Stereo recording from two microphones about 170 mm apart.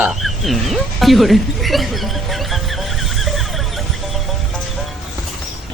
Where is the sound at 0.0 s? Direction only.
Centre (ahead or behind).